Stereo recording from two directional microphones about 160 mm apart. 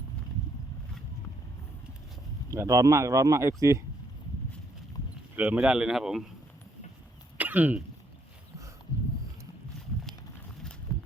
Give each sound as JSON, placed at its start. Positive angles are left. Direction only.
{"t": 2.5, "sound": "speech", "side_deg": -20}
{"t": 5.4, "sound": "a man's voice", "side_deg": -10}
{"t": 7.3, "sound": "cough", "side_deg": -10}